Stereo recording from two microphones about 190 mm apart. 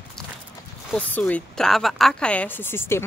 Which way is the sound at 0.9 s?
5° left (ahead or behind).